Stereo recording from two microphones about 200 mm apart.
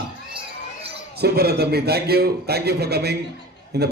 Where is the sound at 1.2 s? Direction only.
50° right (ahead or behind).